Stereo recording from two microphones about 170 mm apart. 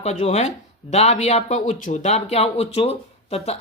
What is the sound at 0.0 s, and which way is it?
Speech, 40° left (ahead or behind).